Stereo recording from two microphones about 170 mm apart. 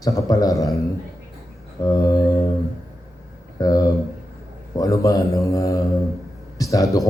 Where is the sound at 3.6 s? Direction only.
20° left (ahead or behind).